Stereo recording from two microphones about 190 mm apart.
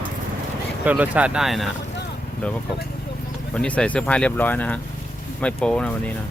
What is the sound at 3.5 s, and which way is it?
Speech, 5° left (ahead or behind).